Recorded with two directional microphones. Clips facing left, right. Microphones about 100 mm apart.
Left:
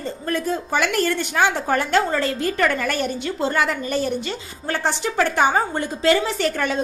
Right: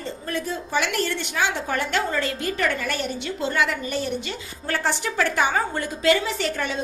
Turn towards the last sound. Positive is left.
turn(degrees=50)  # may be behind; listen again after turning